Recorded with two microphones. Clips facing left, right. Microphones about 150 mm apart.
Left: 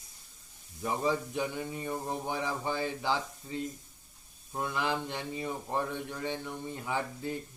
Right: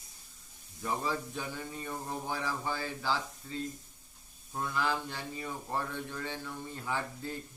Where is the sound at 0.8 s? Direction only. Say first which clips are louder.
Left 4 dB; 20° left (ahead or behind).